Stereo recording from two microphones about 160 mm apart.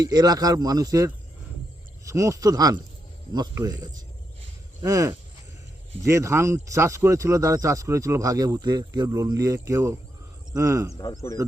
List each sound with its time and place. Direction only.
0.0 s speech: 25° right (ahead or behind)
10.9 s a man's voice: 25° left (ahead or behind)